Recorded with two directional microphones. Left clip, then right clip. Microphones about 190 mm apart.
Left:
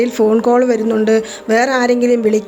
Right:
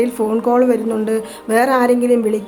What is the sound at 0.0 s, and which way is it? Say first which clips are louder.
A woman's voice: left 4 dB; 15° left (ahead or behind).